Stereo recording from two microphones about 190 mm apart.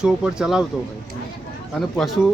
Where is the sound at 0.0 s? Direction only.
5° right (ahead or behind).